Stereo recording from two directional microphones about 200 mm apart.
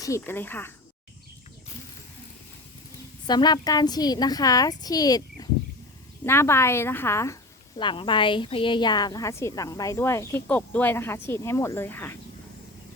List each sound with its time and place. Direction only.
0.0 s a woman's voice: 15° left (ahead or behind)
3.2 s a woman's voice: 20° left (ahead or behind)
7.8 s a woman's voice: 25° left (ahead or behind)